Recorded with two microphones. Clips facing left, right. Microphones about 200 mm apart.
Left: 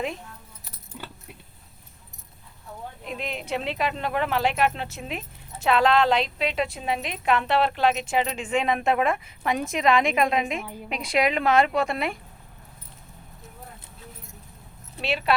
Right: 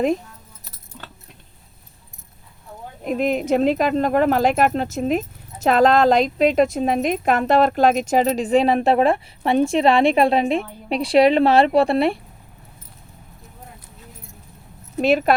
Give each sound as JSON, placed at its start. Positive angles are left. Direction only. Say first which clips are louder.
{"t": 0.9, "sound": "keys jangling", "louder": "left 1 dB", "side_deg": 10}
{"t": 3.0, "sound": "a woman's voice", "louder": "right 14 dB", "side_deg": -45}
{"t": 14.9, "sound": "speech", "louder": "right 11 dB", "side_deg": -45}